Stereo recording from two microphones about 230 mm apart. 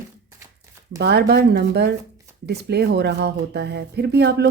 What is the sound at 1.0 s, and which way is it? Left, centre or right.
Speech, right.